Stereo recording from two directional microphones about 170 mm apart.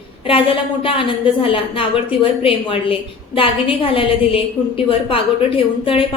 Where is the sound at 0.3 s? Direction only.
30° left (ahead or behind).